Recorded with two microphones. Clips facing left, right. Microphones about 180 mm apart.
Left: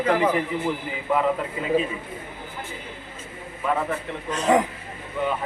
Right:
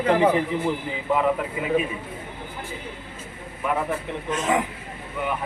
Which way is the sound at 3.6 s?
10° right (ahead or behind).